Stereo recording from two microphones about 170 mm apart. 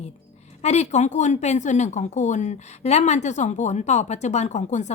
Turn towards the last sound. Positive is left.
turn(degrees=45)  # may be behind; listen again after turning